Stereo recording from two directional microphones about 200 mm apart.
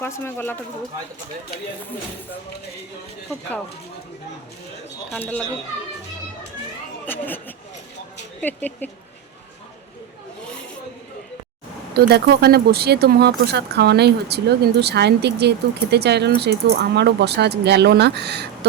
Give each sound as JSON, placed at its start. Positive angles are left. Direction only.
{"t": 0.0, "sound": "speech", "side_deg": 10}
{"t": 5.1, "sound": "speech", "side_deg": 5}
{"t": 7.0, "sound": "speech", "side_deg": 10}
{"t": 11.9, "sound": "speech", "side_deg": -55}